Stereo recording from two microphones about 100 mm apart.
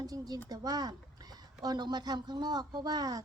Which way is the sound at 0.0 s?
40° right (ahead or behind).